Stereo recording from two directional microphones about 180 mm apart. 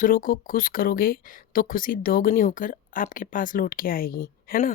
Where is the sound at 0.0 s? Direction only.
50° left (ahead or behind).